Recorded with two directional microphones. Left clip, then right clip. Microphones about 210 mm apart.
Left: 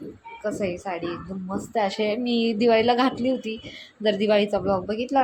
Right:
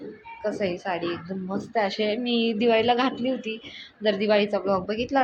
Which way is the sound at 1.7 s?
20° left (ahead or behind).